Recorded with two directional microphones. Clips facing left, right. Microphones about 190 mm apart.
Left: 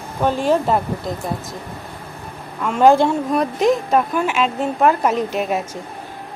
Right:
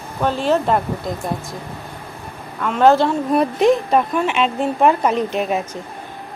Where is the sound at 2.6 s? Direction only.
10° left (ahead or behind).